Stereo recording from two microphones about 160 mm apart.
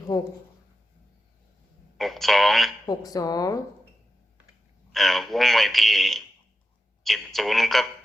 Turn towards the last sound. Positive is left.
turn(degrees=0)  # may be behind; listen again after turning